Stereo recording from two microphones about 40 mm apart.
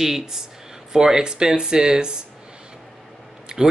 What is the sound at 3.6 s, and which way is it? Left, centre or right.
Speech, centre.